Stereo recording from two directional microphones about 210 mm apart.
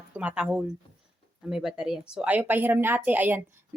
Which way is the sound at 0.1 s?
5° right (ahead or behind).